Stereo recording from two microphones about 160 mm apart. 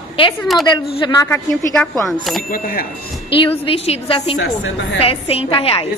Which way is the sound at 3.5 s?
35° left (ahead or behind).